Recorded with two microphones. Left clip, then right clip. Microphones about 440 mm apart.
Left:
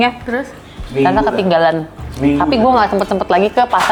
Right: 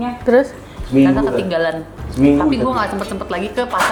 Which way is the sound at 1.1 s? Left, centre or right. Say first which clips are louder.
Left 4 dB; left.